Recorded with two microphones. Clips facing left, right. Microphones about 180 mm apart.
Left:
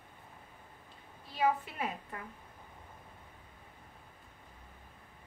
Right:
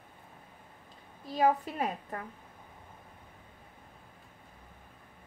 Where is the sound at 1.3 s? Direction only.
40° right (ahead or behind).